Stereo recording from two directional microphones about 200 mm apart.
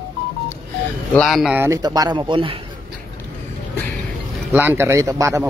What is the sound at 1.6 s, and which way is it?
Speech, 15° right (ahead or behind).